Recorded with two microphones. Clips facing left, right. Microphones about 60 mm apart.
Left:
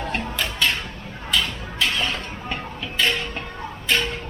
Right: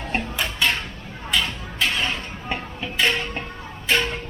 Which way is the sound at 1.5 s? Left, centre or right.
Right.